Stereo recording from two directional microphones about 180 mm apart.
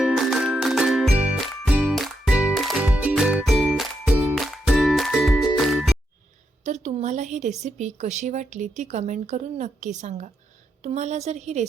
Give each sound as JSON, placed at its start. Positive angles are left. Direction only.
{"t": 0.0, "sound": "music", "side_deg": 0}
{"t": 6.7, "sound": "a woman's voice", "side_deg": -40}